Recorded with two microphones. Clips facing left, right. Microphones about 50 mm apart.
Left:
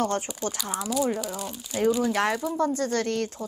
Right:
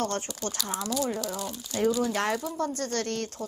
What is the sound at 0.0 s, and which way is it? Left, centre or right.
Speech, centre.